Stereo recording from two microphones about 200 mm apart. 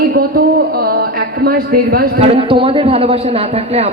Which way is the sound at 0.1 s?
50° right (ahead or behind).